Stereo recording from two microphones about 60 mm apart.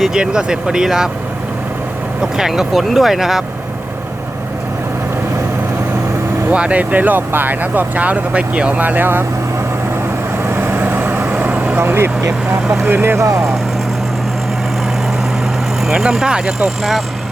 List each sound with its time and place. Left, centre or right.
0.0 s speech: centre
2.2 s speech: centre
6.5 s speech: right
10.5 s vehicle: right
11.9 s speech: right
13.1 s speech: right
15.9 s speech: centre